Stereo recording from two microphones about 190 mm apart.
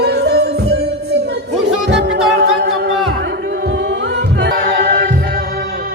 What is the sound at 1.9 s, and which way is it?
Music, 65° right (ahead or behind).